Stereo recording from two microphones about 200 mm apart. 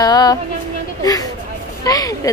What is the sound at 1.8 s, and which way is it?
Speech, 20° left (ahead or behind).